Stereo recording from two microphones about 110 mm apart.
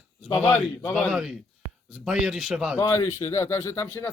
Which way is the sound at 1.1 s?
5° right (ahead or behind).